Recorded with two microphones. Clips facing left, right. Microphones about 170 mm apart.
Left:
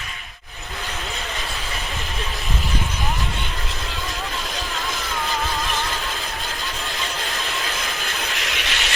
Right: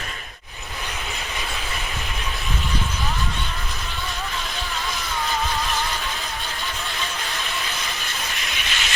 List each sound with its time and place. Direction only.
8.5 s train: 70° left (ahead or behind)